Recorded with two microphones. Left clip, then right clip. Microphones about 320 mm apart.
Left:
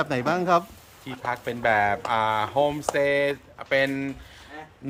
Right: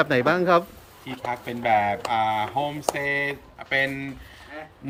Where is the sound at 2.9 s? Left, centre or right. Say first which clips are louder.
Left 2 dB; right.